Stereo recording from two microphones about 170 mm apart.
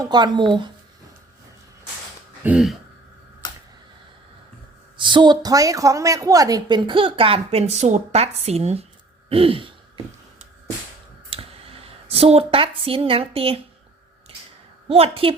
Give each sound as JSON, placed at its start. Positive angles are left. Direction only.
{"t": 0.0, "sound": "a woman's voice", "side_deg": -25}
{"t": 2.4, "sound": "speech", "side_deg": -5}
{"t": 4.9, "sound": "a woman's voice", "side_deg": -25}
{"t": 11.3, "sound": "speech", "side_deg": -35}
{"t": 14.8, "sound": "a woman's voice", "side_deg": -35}